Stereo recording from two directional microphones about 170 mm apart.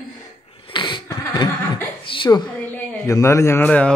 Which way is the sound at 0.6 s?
30° left (ahead or behind).